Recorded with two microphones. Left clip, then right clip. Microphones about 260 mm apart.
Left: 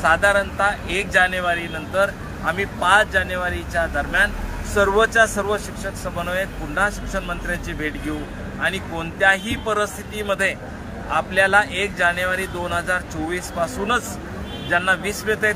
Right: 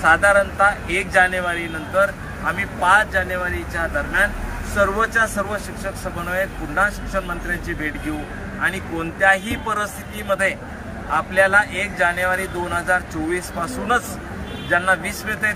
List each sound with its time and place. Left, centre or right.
0.0 s speech: centre
8.5 s speech: centre
14.7 s speech: centre